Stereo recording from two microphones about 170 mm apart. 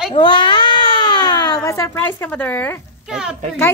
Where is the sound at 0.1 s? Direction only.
25° left (ahead or behind); by 2.7 s 10° left (ahead or behind).